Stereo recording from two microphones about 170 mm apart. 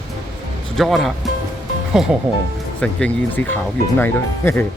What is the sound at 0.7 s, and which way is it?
Speech, centre (ahead or behind).